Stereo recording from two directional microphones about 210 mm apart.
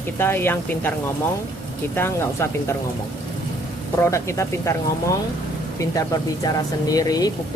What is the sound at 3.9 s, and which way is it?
Speech, 15° left (ahead or behind).